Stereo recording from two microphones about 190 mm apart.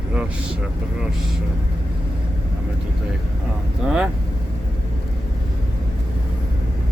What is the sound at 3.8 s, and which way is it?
Speech, 5° right (ahead or behind).